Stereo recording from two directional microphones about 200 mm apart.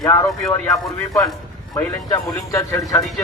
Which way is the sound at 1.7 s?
15° left (ahead or behind).